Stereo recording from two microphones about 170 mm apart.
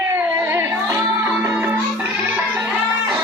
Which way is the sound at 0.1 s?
15° right (ahead or behind).